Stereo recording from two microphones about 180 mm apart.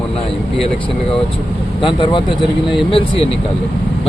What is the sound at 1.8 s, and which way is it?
Speech, 25° left (ahead or behind).